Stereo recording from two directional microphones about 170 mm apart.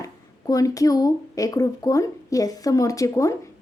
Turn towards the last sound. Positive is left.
turn(degrees=20)  # may be behind; listen again after turning